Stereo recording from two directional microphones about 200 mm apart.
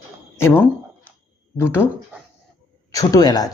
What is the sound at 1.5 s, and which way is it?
Speech, 10° left (ahead or behind).